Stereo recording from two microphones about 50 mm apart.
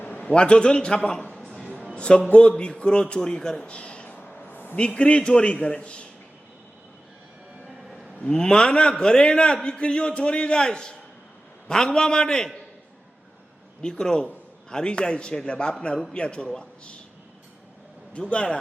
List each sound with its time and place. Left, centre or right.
0.3 s a man's voice: centre
2.0 s a man's voice: left
3.7 s a sound: left
4.1 s a sound: left
4.8 s a man's voice: left
8.2 s a man's voice: centre
13.8 s a man's voice: centre
18.1 s a man's voice: left